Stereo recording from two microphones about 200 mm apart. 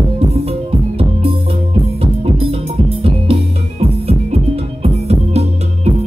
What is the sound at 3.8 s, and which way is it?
Music, 30° right (ahead or behind).